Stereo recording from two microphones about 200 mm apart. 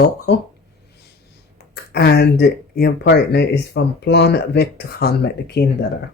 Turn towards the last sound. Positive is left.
turn(degrees=55)  # may be behind; listen again after turning